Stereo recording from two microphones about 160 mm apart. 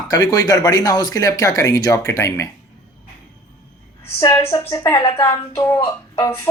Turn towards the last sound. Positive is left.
turn(degrees=20)  # may be behind; listen again after turning